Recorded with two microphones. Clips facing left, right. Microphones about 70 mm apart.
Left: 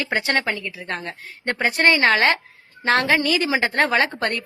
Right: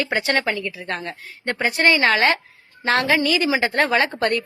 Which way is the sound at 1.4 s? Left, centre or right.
Left.